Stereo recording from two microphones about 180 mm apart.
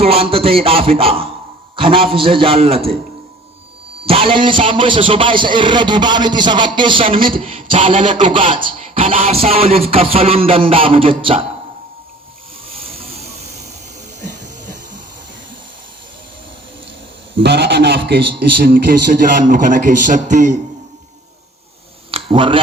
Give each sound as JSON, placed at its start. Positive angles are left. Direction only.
{"t": 0.0, "sound": "music", "side_deg": -30}
{"t": 1.7, "sound": "a man's voice", "side_deg": -30}
{"t": 4.0, "sound": "a man's voice", "side_deg": -30}
{"t": 9.2, "sound": "music", "side_deg": -35}
{"t": 12.7, "sound": "vehicle", "side_deg": -35}
{"t": 17.4, "sound": "a man's voice", "side_deg": -70}
{"t": 22.1, "sound": "a sound", "side_deg": -30}